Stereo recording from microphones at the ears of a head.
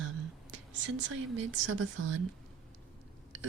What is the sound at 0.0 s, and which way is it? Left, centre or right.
A woman's voice, right.